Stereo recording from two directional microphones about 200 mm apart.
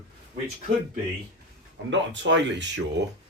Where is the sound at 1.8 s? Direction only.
65° right (ahead or behind).